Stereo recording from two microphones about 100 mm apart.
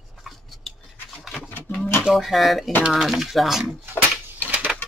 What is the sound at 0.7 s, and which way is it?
Rub, centre (ahead or behind).